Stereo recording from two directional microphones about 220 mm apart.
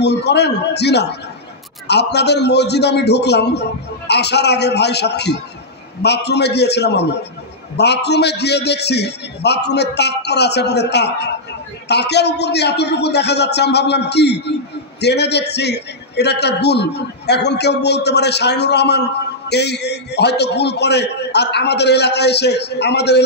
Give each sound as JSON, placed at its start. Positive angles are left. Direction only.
{"t": 0.0, "sound": "a man's voice", "side_deg": 50}